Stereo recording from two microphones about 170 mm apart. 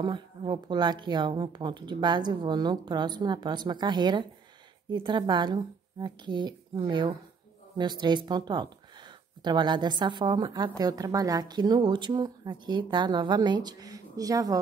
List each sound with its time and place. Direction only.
0.0 s a woman's voice: 25° right (ahead or behind)